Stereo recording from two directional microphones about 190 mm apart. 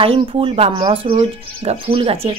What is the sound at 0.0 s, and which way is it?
Speech, 30° right (ahead or behind).